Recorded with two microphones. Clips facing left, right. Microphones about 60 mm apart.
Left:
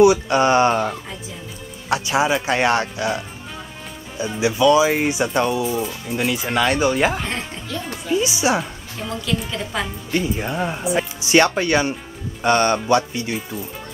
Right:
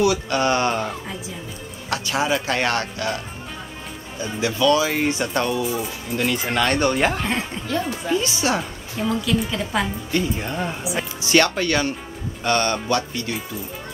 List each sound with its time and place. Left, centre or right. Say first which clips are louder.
0.0 s speech: left 6 dB; left
1.9 s speech: left 3 dB; centre
4.2 s speech: left 3 dB; centre
8.2 s speech: left 3 dB; centre
9.0 s speech: right 3 dB; centre
10.1 s speech: left 2 dB; centre